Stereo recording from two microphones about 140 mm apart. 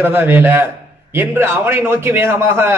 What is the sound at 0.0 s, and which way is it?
Speech, 15° right (ahead or behind).